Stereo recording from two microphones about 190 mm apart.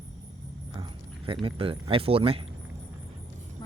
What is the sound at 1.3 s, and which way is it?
Speech, 30° right (ahead or behind).